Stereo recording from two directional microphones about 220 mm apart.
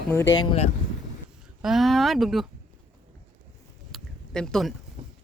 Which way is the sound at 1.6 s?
Centre (ahead or behind).